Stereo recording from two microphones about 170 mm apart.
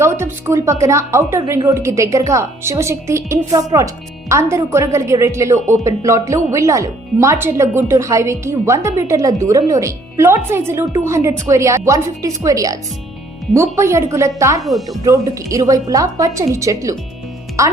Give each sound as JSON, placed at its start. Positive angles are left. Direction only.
{"t": 0.0, "sound": "a woman's voice", "side_deg": -15}
{"t": 14.6, "sound": "speech", "side_deg": 0}
{"t": 15.0, "sound": "a woman's voice", "side_deg": -20}